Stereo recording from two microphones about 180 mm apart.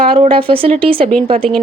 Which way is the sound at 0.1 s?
30° right (ahead or behind).